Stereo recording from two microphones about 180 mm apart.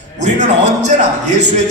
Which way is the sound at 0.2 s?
40° right (ahead or behind).